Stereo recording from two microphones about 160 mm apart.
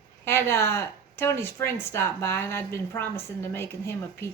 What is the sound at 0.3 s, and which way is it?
A woman's voice, 15° left (ahead or behind).